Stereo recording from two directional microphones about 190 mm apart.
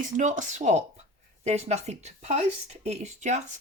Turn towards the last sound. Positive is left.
turn(degrees=-40)  # may be behind; listen again after turning